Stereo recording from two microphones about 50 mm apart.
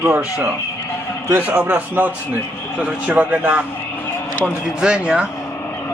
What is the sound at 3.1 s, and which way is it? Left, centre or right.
Speech, right.